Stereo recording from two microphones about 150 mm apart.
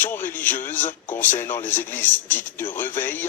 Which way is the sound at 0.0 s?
15° left (ahead or behind).